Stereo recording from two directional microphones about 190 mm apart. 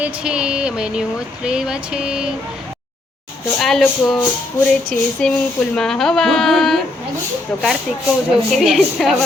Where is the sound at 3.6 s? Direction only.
Centre (ahead or behind).